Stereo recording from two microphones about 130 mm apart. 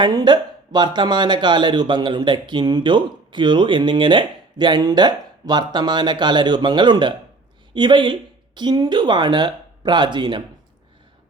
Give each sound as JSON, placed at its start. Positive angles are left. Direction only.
{"t": 0.0, "sound": "speech", "side_deg": -35}